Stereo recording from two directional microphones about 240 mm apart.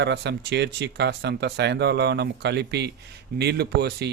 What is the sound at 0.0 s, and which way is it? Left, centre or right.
Speech, right.